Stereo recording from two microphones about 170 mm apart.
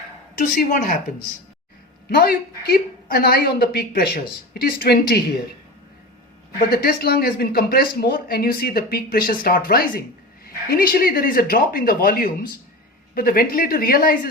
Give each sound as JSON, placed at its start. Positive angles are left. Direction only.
{"t": 0.3, "sound": "a woman's voice", "side_deg": 55}
{"t": 2.0, "sound": "speech", "side_deg": 65}
{"t": 6.7, "sound": "speech", "side_deg": 65}